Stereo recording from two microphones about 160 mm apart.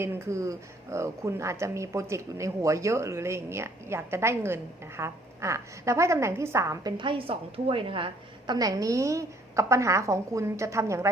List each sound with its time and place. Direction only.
0.0 s speech: 15° right (ahead or behind)
6.9 s a woman's voice: 30° right (ahead or behind)